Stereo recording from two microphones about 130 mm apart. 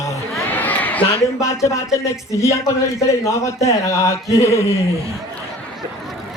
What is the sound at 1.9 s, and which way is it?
A man's voice, 20° left (ahead or behind).